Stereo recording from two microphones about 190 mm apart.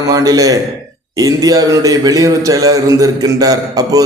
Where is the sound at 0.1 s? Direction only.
20° right (ahead or behind).